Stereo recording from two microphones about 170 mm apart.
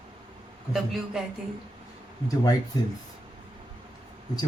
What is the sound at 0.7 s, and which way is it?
Speech, centre (ahead or behind).